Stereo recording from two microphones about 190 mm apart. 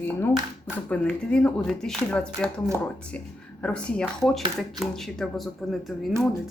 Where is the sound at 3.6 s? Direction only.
5° left (ahead or behind).